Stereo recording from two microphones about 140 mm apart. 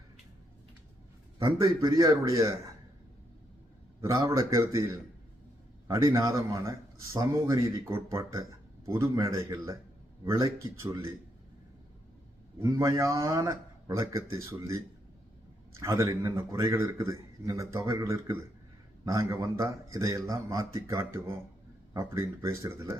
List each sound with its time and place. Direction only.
1.4 s a man's voice: 25° right (ahead or behind)
4.0 s a man's voice: 25° right (ahead or behind)
6.1 s a man's voice: 20° right (ahead or behind)
12.5 s a man's voice: 20° right (ahead or behind)
15.8 s a man's voice: 25° right (ahead or behind)